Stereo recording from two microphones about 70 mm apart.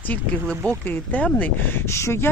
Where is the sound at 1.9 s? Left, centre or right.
Left.